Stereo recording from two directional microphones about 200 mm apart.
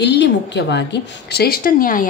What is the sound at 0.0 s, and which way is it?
A woman's voice, 60° left (ahead or behind).